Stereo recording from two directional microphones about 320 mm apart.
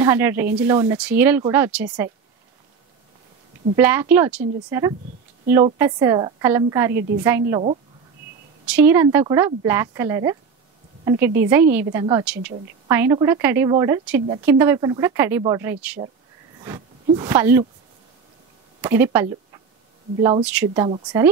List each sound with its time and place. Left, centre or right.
0.0 s a woman's voice: centre
3.7 s a woman's voice: centre
8.6 s a woman's voice: centre
18.8 s a woman's voice: centre